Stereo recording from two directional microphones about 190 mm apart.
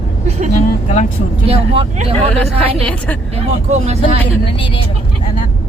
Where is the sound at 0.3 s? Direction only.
40° right (ahead or behind).